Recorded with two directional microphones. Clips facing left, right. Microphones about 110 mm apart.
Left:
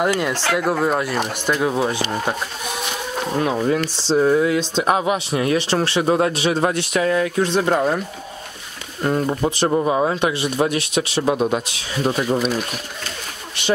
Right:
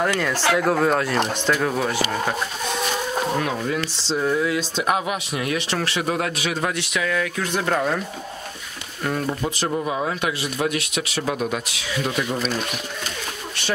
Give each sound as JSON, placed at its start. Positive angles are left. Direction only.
{"t": 0.0, "sound": "speech", "side_deg": 15}
{"t": 3.6, "sound": "speech", "side_deg": 30}
{"t": 9.0, "sound": "speech", "side_deg": 25}
{"t": 12.4, "sound": "speech", "side_deg": 10}